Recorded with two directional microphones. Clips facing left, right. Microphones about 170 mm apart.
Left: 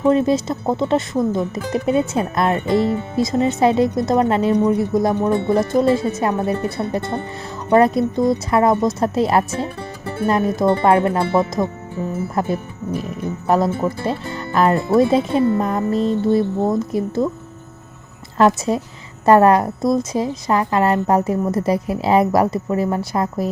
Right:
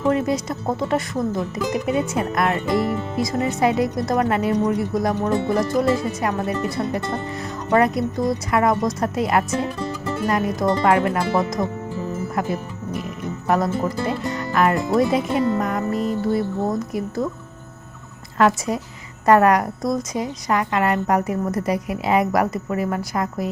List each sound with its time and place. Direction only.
0.1 s speech: 25° left (ahead or behind)
18.3 s speech: 30° left (ahead or behind)